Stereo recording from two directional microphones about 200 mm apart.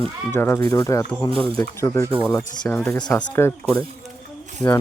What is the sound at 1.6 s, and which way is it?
Speech, 10° left (ahead or behind).